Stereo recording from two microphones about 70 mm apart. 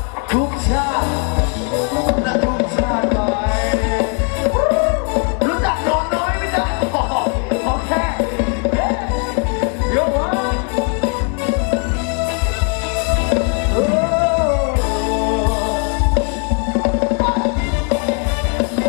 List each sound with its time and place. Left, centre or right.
0.3 s music: centre